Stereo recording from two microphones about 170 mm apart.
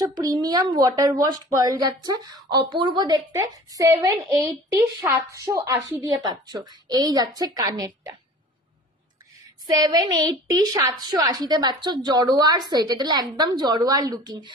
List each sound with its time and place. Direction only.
0.0 s a woman's voice: 20° right (ahead or behind)
9.7 s a woman's voice: 25° right (ahead or behind)